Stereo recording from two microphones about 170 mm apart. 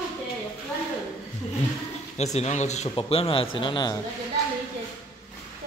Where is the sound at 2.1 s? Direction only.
40° left (ahead or behind).